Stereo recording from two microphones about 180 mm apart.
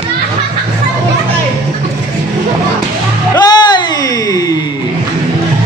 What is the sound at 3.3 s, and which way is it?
Music, 25° left (ahead or behind).